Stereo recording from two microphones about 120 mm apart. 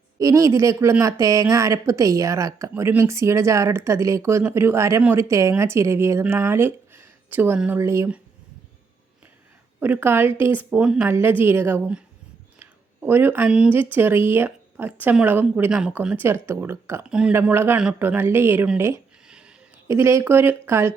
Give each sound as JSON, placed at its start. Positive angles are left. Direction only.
{"t": 0.2, "sound": "speech", "side_deg": -25}
{"t": 9.8, "sound": "a woman's voice", "side_deg": -15}
{"t": 12.5, "sound": "a sound", "side_deg": -15}
{"t": 13.5, "sound": "a woman's voice", "side_deg": -10}
{"t": 17.1, "sound": "a woman's voice", "side_deg": -5}
{"t": 17.3, "sound": "a woman's voice", "side_deg": -20}
{"t": 19.3, "sound": "a sound", "side_deg": -10}
{"t": 19.9, "sound": "speech", "side_deg": -25}